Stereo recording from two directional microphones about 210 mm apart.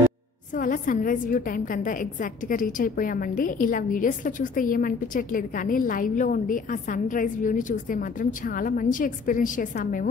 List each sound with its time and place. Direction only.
0.6 s a woman's voice: 40° left (ahead or behind)